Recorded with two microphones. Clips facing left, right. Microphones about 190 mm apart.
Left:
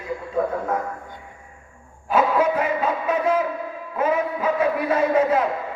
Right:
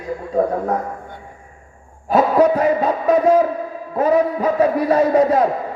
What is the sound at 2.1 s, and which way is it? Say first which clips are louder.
A man's voice: right 5 dB; 35° right (ahead or behind).